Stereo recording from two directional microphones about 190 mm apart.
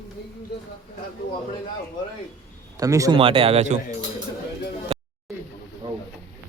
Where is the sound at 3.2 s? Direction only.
30° right (ahead or behind).